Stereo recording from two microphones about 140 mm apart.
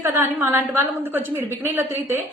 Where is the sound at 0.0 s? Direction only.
15° right (ahead or behind).